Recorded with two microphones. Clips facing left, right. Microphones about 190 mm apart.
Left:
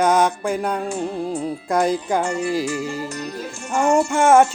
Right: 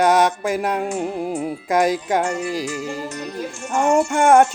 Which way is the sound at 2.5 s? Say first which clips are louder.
Left 3 dB; 55° left (ahead or behind).